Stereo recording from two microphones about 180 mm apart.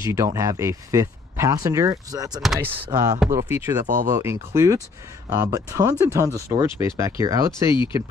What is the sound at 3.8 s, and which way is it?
Speech, 45° right (ahead or behind).